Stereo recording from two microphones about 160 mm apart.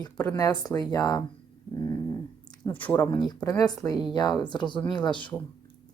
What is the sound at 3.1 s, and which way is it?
Speech, 25° left (ahead or behind).